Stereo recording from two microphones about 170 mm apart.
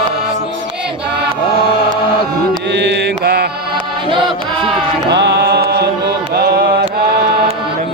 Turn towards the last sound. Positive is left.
turn(degrees=-65)  # may be behind; listen again after turning